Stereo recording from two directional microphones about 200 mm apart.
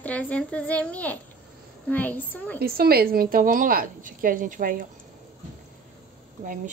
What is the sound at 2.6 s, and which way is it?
A woman's voice, 50° right (ahead or behind).